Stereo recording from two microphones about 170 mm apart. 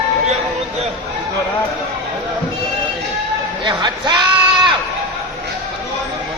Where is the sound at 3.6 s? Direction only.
25° right (ahead or behind).